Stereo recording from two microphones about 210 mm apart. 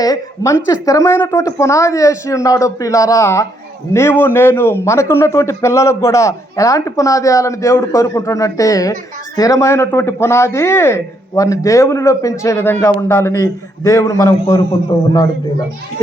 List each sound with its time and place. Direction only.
0.0 s a man's voice: 15° left (ahead or behind)